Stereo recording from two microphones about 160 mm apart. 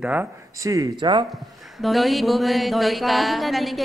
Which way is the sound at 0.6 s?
20° right (ahead or behind).